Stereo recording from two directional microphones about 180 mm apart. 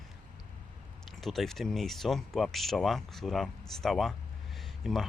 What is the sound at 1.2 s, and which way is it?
Speech, centre (ahead or behind).